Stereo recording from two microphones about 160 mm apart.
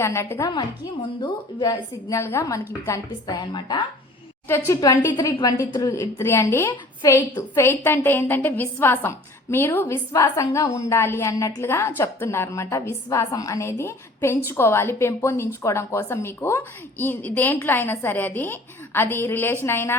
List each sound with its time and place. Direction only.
0.0 s a woman's voice: 15° left (ahead or behind)
4.4 s a woman's voice: 15° left (ahead or behind)